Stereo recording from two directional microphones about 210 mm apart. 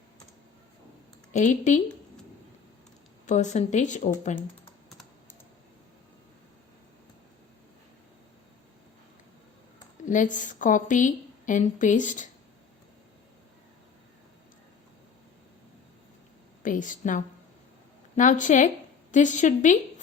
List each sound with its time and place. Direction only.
1.3 s a woman's voice: 35° left (ahead or behind)
3.2 s a woman's voice: 35° left (ahead or behind)
4.9 s computer keyboard: centre (ahead or behind)
10.3 s a woman's voice: 35° left (ahead or behind)
16.6 s a woman's voice: 40° left (ahead or behind)